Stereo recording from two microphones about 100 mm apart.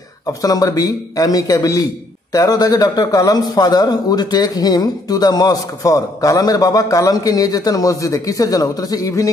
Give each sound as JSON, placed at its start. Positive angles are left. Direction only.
{"t": 0.3, "sound": "a man's voice", "side_deg": 40}